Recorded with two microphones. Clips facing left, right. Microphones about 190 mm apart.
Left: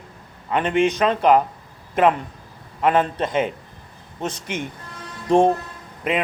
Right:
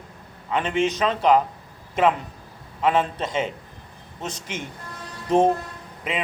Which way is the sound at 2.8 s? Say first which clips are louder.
Left 3 dB; 50° left (ahead or behind).